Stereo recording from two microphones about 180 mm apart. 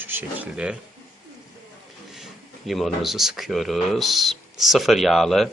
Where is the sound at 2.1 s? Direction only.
Centre (ahead or behind).